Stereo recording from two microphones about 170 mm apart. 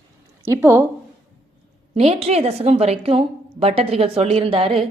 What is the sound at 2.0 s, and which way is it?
A woman's voice, 35° right (ahead or behind).